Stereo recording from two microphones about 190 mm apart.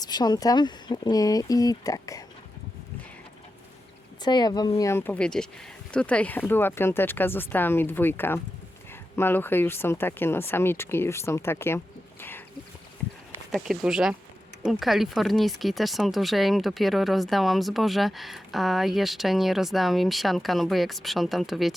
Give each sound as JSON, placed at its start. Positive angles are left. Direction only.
{"t": 0.0, "sound": "speech", "side_deg": 20}
{"t": 4.2, "sound": "speech", "side_deg": 20}
{"t": 13.5, "sound": "speech", "side_deg": 0}